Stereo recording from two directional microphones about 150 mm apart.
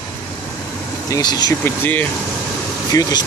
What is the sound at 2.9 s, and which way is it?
Speech, 25° left (ahead or behind).